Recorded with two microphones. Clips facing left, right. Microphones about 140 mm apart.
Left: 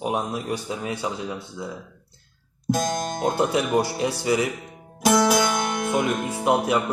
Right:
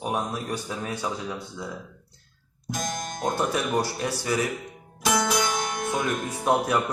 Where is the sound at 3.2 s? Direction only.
25° left (ahead or behind).